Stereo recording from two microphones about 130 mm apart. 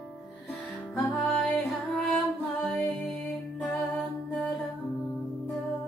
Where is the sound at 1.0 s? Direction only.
Centre (ahead or behind).